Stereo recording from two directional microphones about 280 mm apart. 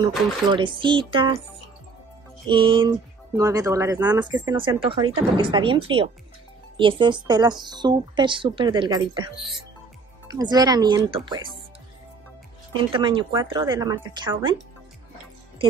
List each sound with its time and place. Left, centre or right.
0.5 s speech: centre
2.4 s speech: centre
10.3 s speech: centre
12.7 s speech: centre